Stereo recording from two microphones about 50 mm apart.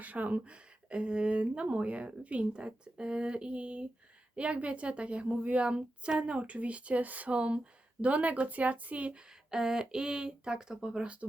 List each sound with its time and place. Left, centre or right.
0.0 s a woman's voice: right
9.5 s speech: centre